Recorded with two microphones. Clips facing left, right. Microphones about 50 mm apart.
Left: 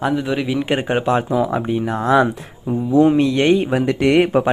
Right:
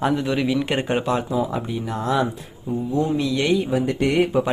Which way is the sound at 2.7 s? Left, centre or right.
Left.